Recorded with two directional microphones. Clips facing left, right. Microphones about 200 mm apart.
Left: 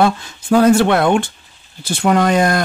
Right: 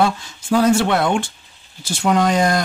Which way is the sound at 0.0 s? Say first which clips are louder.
Left 3 dB; 55° left (ahead or behind).